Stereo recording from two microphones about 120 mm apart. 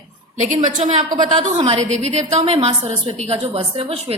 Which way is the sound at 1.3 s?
65° right (ahead or behind).